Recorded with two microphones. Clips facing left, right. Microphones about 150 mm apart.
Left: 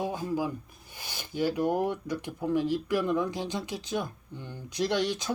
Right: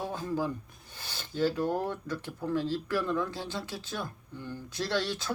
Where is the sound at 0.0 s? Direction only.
15° left (ahead or behind).